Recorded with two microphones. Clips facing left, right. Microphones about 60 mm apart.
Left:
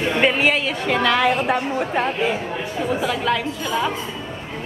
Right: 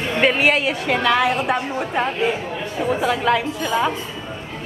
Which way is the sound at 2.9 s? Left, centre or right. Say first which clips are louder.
Right 3 dB; centre.